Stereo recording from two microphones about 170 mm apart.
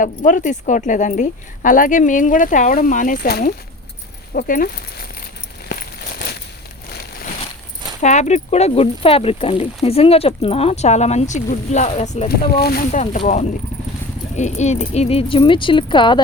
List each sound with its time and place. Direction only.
0.0 s speech: 50° left (ahead or behind)
8.0 s speech: 45° left (ahead or behind)
12.5 s speech: 65° left (ahead or behind)
12.9 s speech: 45° left (ahead or behind); by 16.2 s 30° left (ahead or behind)